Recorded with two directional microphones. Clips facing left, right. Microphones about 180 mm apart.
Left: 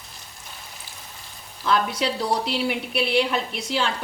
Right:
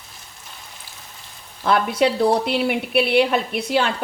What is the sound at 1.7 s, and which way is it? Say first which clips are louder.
A woman's voice: right 5 dB; 55° right (ahead or behind).